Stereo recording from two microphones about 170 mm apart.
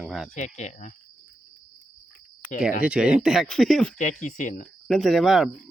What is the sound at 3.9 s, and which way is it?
Speech, 50° left (ahead or behind).